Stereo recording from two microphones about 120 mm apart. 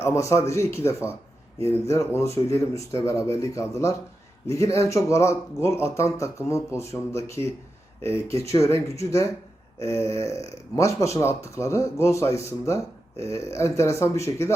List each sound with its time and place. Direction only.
0.0 s speech: 25° left (ahead or behind)